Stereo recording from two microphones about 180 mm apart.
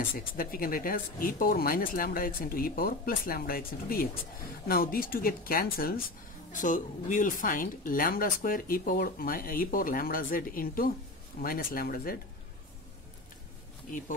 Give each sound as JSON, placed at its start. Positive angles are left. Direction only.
{"t": 0.1, "sound": "speech", "side_deg": 55}